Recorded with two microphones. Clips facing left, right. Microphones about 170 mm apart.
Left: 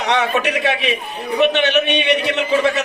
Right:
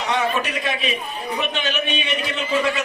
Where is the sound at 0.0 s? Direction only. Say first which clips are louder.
Left 4 dB; 70° left (ahead or behind).